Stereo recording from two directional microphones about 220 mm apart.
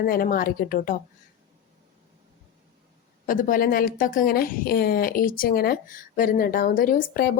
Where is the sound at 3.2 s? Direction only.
40° left (ahead or behind).